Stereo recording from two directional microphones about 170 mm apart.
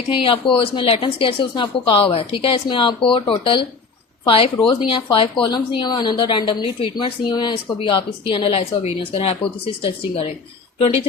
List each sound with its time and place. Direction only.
0.1 s a woman's voice: 30° left (ahead or behind)